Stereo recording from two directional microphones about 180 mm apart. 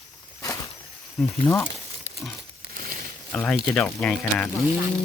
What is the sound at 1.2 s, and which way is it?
Speech, 5° left (ahead or behind).